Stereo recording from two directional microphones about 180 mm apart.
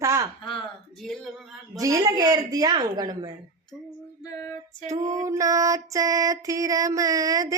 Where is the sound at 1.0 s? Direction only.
Centre (ahead or behind).